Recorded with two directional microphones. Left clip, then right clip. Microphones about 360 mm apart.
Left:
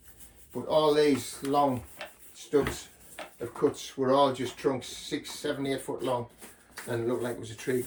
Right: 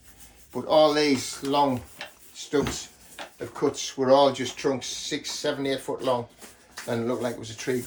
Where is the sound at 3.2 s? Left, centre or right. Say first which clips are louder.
Right 3 dB; centre.